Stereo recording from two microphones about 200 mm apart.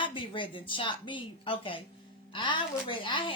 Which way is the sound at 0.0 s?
25° left (ahead or behind).